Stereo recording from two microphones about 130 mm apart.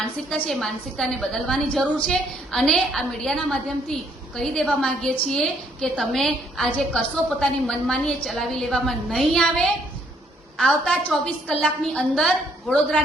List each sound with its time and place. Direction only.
0.3 s a woman's voice: 5° left (ahead or behind)